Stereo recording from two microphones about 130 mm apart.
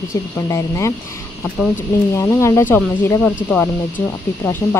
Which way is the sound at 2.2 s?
20° left (ahead or behind).